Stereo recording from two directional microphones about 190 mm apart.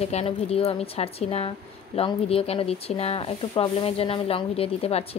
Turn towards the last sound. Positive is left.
turn(degrees=30)  # may be behind; listen again after turning